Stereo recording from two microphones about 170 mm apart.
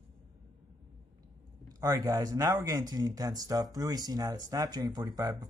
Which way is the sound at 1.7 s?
20° right (ahead or behind).